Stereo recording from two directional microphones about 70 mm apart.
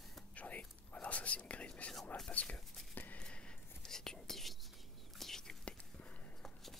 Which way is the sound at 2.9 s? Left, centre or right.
Left.